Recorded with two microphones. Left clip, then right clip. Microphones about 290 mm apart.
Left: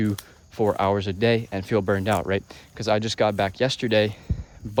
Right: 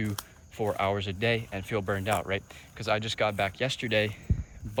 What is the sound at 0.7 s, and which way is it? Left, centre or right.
Speech, left.